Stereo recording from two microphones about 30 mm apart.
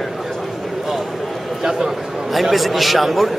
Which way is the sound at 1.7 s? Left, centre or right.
Centre.